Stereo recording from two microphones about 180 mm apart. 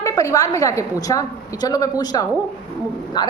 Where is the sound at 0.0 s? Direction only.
20° left (ahead or behind).